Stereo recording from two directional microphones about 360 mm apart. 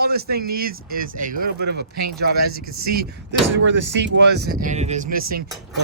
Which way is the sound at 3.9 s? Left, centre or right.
Right.